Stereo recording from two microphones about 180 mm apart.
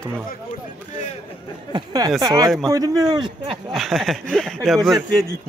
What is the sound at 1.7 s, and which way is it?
A man's voice, 20° right (ahead or behind).